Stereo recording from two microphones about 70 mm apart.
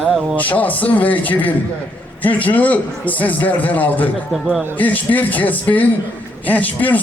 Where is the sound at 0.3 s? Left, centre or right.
Left.